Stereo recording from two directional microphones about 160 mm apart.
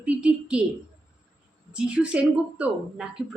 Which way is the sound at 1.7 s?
5° right (ahead or behind).